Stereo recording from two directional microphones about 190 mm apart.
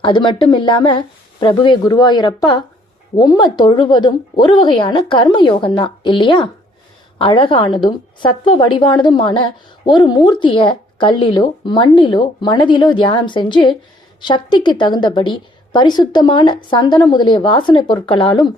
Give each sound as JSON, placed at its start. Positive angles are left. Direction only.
{"t": 0.0, "sound": "a woman's voice", "side_deg": 25}